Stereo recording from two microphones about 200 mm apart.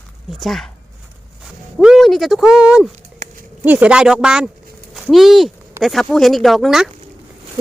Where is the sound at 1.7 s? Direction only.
Centre (ahead or behind).